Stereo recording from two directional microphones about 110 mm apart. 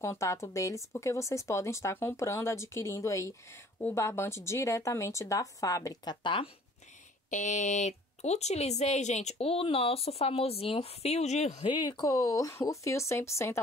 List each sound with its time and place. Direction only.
0.0 s speech: 25° left (ahead or behind)
6.2 s speech: 50° left (ahead or behind)
7.2 s speech: 90° left
11.6 s speech: 40° left (ahead or behind); by 13.6 s 25° left (ahead or behind)